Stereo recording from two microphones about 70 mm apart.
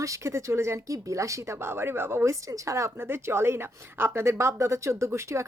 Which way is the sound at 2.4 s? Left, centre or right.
Right.